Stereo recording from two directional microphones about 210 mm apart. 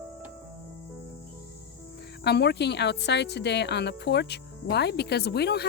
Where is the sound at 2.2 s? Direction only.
50° left (ahead or behind).